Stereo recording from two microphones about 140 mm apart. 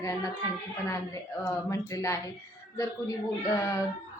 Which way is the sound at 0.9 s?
25° left (ahead or behind).